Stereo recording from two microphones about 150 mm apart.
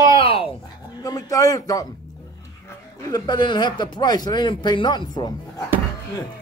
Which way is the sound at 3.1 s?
30° left (ahead or behind).